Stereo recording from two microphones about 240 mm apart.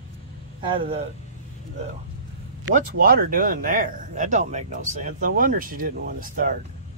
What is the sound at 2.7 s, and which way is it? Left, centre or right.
Speech, right.